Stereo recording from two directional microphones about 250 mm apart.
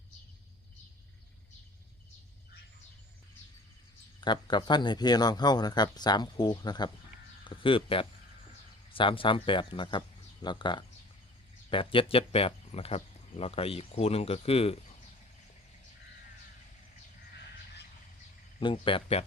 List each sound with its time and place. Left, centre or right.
4.2 s speech: centre
7.4 s a sound: centre
8.9 s speech: left
18.6 s speech: left